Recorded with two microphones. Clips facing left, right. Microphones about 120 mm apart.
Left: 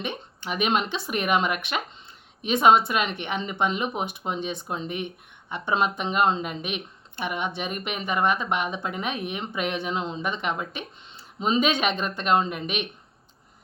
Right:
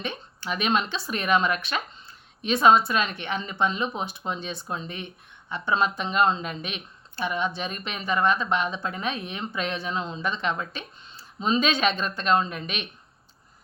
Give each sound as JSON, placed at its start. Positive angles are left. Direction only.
{"t": 0.0, "sound": "speech", "side_deg": 20}